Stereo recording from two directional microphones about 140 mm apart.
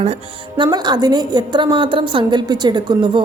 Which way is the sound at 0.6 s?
30° right (ahead or behind).